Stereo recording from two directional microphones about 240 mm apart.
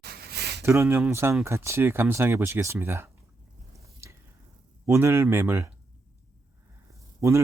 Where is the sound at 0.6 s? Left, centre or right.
Centre.